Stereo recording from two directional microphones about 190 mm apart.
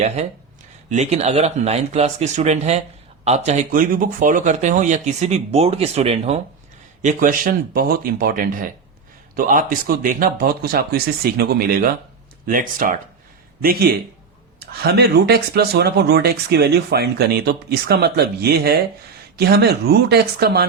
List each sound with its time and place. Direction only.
0.9 s speech: 35° right (ahead or behind)
7.0 s speech: 45° right (ahead or behind)